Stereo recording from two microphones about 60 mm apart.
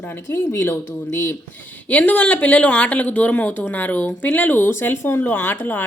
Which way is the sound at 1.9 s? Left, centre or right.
Left.